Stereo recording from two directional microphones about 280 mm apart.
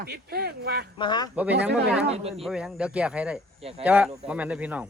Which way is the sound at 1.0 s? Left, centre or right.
Centre.